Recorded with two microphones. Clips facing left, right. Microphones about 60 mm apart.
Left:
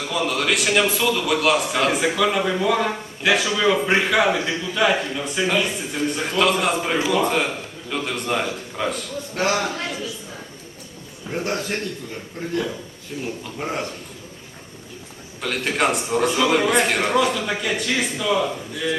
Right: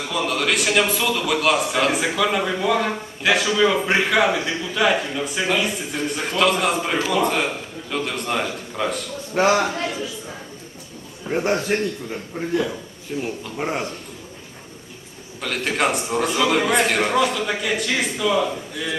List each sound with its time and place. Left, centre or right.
0.1 s a man's voice: centre
9.3 s a man's voice: centre
11.3 s a man's voice: centre
15.4 s a man's voice: centre